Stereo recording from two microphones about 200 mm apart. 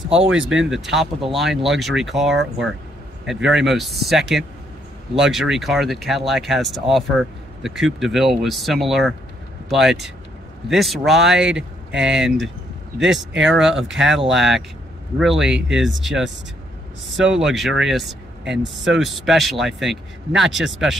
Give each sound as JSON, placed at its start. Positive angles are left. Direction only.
{"t": 0.7, "sound": "speech", "side_deg": 0}
{"t": 13.0, "sound": "speech", "side_deg": -65}
{"t": 13.6, "sound": "speech", "side_deg": 0}